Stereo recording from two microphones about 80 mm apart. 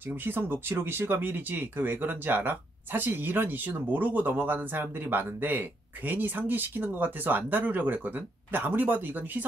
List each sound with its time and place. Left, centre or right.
0.1 s speech: right